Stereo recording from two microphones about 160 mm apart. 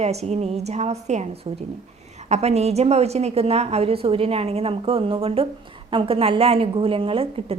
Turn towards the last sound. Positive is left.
turn(degrees=-35)  # may be behind; listen again after turning